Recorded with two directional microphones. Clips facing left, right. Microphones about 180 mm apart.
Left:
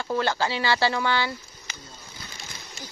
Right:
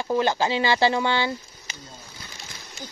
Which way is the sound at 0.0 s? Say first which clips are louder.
Right 3 dB; 15° right (ahead or behind).